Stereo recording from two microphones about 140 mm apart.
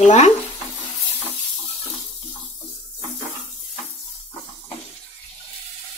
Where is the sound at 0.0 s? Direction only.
55° left (ahead or behind).